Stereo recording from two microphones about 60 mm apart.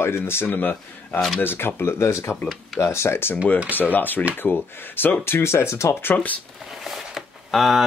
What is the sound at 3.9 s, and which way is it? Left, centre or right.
Speech, left.